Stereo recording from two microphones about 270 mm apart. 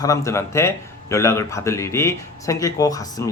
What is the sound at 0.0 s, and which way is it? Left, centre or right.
A man's voice, centre.